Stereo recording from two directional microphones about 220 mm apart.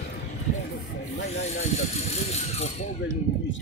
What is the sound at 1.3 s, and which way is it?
Speech, 30° left (ahead or behind).